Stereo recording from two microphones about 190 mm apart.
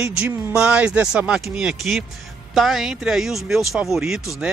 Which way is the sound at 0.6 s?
5° right (ahead or behind).